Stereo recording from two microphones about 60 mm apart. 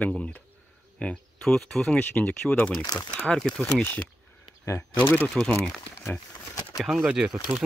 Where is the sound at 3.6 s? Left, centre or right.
Left.